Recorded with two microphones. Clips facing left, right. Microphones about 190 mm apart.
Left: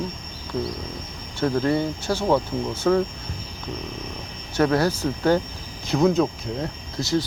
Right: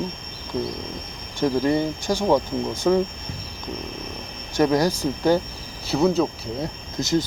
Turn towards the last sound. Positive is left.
turn(degrees=-20)  # may be behind; listen again after turning